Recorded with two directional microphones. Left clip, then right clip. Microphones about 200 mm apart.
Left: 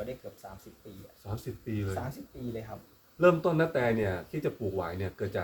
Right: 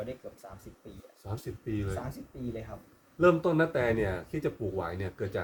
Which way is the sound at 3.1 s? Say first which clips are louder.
Even; 45° right (ahead or behind).